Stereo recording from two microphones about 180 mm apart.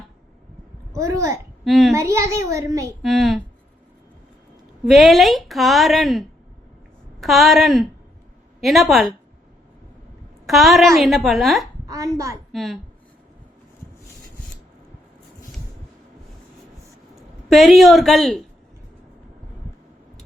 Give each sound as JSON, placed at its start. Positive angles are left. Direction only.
{"t": 0.9, "sound": "a woman's voice", "side_deg": -15}
{"t": 1.6, "sound": "a child's voice", "side_deg": 0}
{"t": 1.9, "sound": "a woman's voice", "side_deg": -15}
{"t": 3.0, "sound": "a woman's voice", "side_deg": 0}
{"t": 4.9, "sound": "a woman's voice", "side_deg": 0}
{"t": 10.4, "sound": "a woman's voice", "side_deg": 0}
{"t": 11.9, "sound": "a child's voice", "side_deg": -20}
{"t": 12.5, "sound": "a woman's voice", "side_deg": 0}
{"t": 17.5, "sound": "a woman's voice", "side_deg": 0}